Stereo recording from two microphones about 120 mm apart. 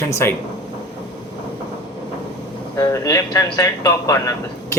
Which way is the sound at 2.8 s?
30° left (ahead or behind).